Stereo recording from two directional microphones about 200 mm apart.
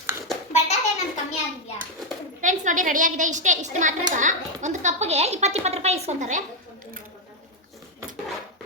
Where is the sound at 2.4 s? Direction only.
40° right (ahead or behind).